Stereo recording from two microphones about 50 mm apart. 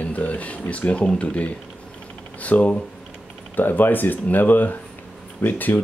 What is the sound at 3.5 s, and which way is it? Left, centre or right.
Speech, left.